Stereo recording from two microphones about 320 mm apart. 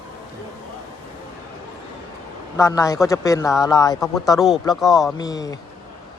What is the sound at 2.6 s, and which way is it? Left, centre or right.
Speech, centre.